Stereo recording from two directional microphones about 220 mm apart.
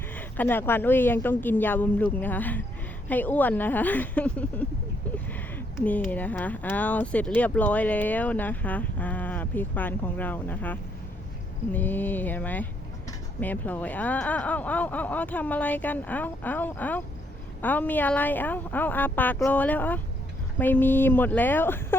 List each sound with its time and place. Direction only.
0.1 s speech: 10° left (ahead or behind)